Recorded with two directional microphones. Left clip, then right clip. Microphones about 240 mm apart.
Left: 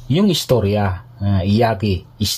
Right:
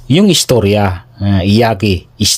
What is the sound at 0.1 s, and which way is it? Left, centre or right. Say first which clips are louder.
Speech: right 6 dB; right.